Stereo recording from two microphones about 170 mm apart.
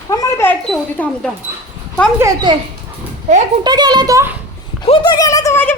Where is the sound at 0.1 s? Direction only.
20° left (ahead or behind).